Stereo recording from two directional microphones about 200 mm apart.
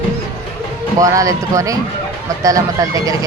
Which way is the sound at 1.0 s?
15° right (ahead or behind).